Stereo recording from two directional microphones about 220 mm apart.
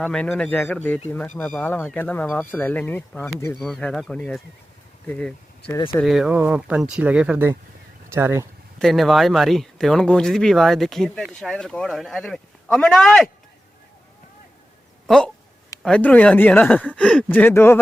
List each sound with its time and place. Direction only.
0.0 s speech: 5° left (ahead or behind)
6.0 s speech: centre (ahead or behind)
8.8 s speech: centre (ahead or behind)
15.0 s speech: 5° left (ahead or behind)